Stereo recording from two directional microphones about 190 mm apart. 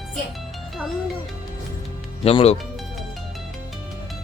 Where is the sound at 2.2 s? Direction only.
30° left (ahead or behind).